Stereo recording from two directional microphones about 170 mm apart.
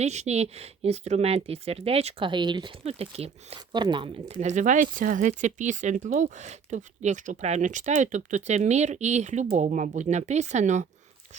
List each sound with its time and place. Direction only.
0.0 s speech: 40° right (ahead or behind)